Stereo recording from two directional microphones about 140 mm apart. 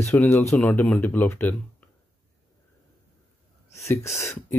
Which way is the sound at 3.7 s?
20° left (ahead or behind).